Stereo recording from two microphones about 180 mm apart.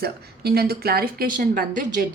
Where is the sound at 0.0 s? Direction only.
60° right (ahead or behind).